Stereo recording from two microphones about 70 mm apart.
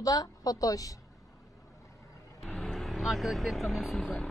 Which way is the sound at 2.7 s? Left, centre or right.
Centre.